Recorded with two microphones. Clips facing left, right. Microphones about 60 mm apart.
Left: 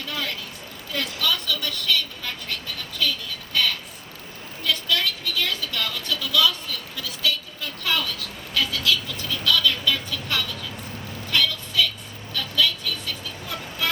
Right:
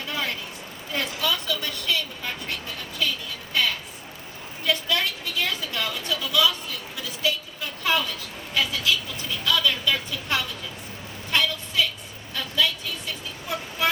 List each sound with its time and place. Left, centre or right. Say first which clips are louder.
0.1 s vehicle: right 1 dB; right
3.0 s speech: left 1 dB; right
3.5 s a sound: even; right
8.5 s speech: left 1 dB; centre
11.3 s vehicle: even; right